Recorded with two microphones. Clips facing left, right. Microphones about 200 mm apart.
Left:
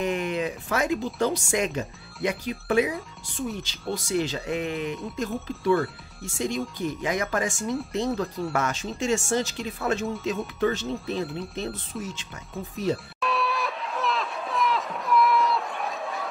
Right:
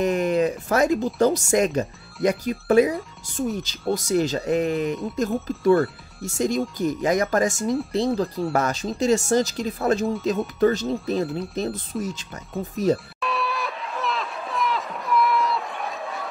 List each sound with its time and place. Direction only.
0.0 s speech: 40° right (ahead or behind)
11.1 s speech: centre (ahead or behind)
11.5 s speech: 40° right (ahead or behind)
12.9 s a sound: centre (ahead or behind)